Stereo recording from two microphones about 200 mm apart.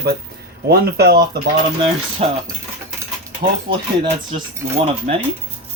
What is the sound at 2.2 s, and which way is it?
Speech, 30° right (ahead or behind).